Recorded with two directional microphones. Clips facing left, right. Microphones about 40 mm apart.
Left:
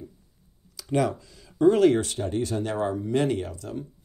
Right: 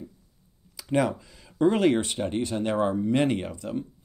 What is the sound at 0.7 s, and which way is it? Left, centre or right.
Speech, centre.